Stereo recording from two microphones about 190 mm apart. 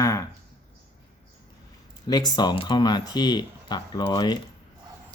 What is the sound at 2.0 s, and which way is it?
Speech, 20° left (ahead or behind).